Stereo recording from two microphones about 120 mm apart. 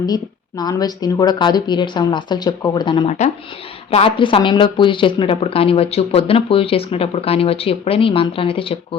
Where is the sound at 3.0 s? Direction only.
70° left (ahead or behind).